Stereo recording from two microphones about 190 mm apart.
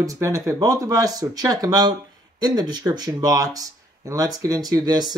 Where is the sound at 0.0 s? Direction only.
15° right (ahead or behind).